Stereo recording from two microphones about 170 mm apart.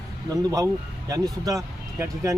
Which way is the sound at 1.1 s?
20° right (ahead or behind).